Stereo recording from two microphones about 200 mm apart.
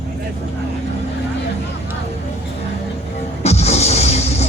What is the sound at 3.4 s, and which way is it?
Music, 35° left (ahead or behind).